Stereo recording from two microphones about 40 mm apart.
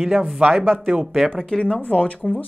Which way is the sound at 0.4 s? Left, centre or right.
Right.